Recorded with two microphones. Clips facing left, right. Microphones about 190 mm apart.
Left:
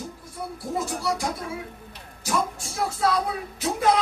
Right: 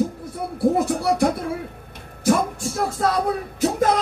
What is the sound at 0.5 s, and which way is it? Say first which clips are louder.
Music: right 11 dB; 60° right (ahead or behind).